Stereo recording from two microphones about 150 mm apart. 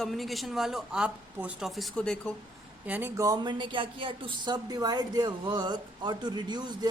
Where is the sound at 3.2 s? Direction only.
25° right (ahead or behind).